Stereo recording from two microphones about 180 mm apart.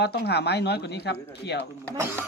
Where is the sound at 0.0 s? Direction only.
65° left (ahead or behind).